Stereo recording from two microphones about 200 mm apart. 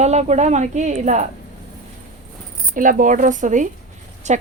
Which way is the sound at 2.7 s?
40° right (ahead or behind).